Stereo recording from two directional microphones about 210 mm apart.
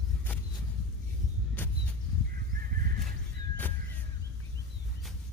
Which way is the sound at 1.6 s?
10° left (ahead or behind).